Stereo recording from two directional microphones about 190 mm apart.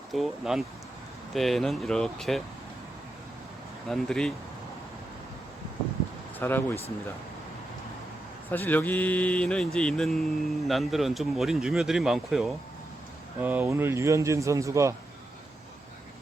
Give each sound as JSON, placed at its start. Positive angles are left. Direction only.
{"t": 0.1, "sound": "speech", "side_deg": 0}
{"t": 3.8, "sound": "speech", "side_deg": 0}
{"t": 6.4, "sound": "speech", "side_deg": 10}
{"t": 8.4, "sound": "a man's voice", "side_deg": 10}